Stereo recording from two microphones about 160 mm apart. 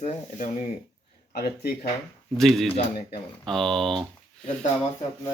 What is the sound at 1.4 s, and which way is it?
Speech, 75° left (ahead or behind).